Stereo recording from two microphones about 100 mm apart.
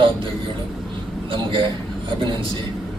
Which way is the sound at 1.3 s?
55° right (ahead or behind).